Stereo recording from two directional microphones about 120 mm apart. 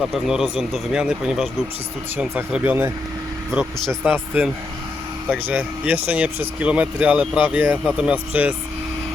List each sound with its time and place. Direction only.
0.0 s speech: centre (ahead or behind)
4.0 s speech: 15° right (ahead or behind)